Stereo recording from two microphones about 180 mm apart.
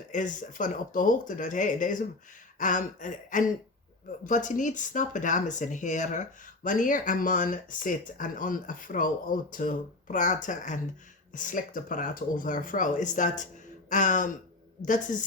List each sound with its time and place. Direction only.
0.1 s speech: 45° left (ahead or behind)